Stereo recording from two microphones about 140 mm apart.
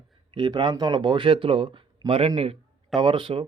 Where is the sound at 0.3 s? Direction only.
35° right (ahead or behind).